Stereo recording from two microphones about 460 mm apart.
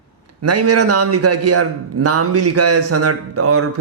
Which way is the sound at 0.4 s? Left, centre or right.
Right.